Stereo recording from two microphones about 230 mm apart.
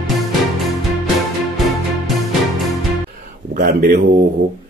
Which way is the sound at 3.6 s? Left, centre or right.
Right.